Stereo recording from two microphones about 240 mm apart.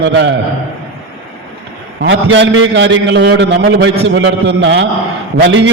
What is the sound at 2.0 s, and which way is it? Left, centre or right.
A man's voice, right.